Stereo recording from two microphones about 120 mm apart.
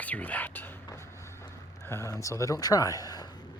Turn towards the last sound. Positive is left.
turn(degrees=30)  # may be behind; listen again after turning